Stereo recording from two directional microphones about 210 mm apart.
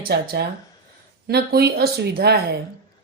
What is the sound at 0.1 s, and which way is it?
Speech, 50° right (ahead or behind).